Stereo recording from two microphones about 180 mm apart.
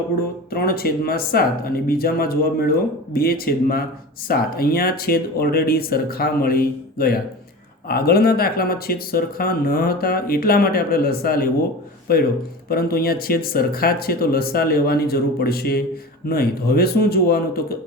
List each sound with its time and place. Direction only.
0.5 s speech: 55° left (ahead or behind)